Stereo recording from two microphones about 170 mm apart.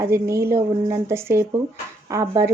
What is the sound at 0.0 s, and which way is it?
Speech, 15° right (ahead or behind).